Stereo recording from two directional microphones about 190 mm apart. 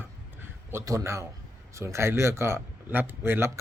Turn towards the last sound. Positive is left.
turn(degrees=-10)  # may be behind; listen again after turning